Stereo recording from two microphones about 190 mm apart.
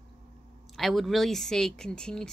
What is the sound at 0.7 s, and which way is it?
Speech, centre (ahead or behind).